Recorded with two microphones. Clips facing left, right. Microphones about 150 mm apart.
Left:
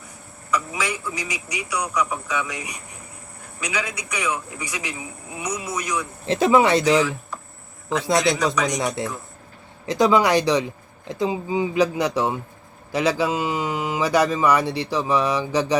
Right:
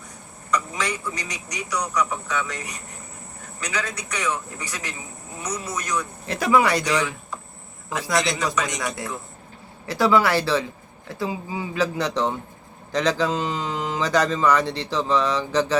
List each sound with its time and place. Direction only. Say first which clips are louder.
0.5 s speech: even; 5° left (ahead or behind)
6.2 s speech: left 3 dB; 25° left (ahead or behind)
6.8 s speech: left 5 dB; centre (ahead or behind)
9.8 s speech: left 2 dB; 20° left (ahead or behind)